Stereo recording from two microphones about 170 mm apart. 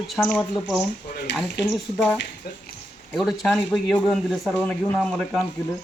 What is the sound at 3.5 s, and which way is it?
Speech, 10° left (ahead or behind).